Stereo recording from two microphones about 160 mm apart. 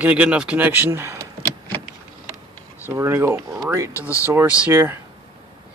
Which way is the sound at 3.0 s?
15° right (ahead or behind).